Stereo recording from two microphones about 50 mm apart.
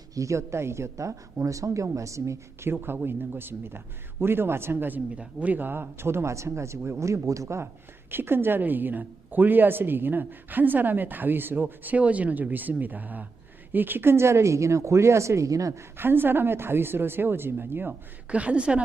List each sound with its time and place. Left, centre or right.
0.2 s speech: right
2.8 s a man's voice: right
5.1 s speech: right
7.0 s speech: right
8.1 s a woman's voice: right
16.0 s a man's voice: right
18.3 s a woman's voice: right